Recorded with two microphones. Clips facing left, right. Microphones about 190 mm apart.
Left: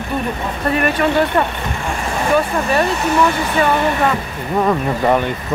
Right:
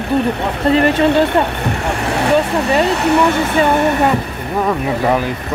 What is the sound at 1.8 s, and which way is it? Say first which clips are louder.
Boat: right 2 dB; 70° right (ahead or behind).